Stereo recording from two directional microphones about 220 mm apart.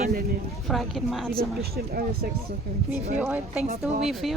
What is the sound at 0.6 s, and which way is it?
Speech, centre (ahead or behind).